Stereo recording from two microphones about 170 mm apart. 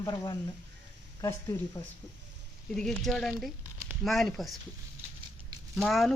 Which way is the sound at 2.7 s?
5° left (ahead or behind).